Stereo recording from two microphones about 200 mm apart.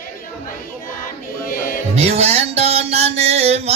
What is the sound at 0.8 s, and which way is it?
Choir, 45° left (ahead or behind).